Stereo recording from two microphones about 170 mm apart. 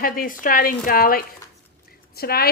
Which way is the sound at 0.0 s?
55° left (ahead or behind).